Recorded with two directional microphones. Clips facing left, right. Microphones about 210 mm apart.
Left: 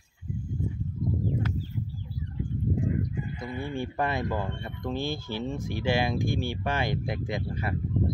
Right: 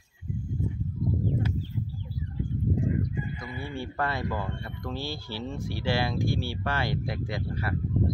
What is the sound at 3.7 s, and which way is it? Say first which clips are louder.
Speech: left 1 dB; 15° left (ahead or behind).